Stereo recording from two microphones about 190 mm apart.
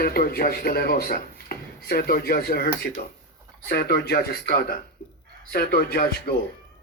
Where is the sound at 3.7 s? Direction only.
55° left (ahead or behind).